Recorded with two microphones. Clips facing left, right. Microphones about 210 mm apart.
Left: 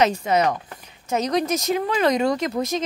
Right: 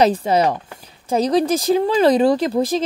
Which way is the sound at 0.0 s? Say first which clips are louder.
Right 4 dB; 30° right (ahead or behind).